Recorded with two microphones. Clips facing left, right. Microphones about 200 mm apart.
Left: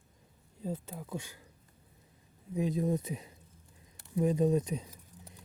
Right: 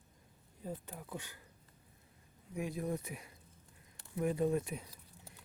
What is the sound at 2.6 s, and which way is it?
Speech, 20° left (ahead or behind).